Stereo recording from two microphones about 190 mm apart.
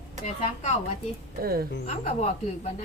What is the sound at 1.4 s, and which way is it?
Speech, 55° right (ahead or behind).